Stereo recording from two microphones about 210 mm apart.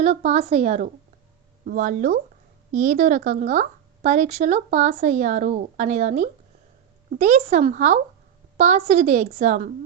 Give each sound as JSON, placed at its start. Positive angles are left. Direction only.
{"t": 0.0, "sound": "a woman's voice", "side_deg": -30}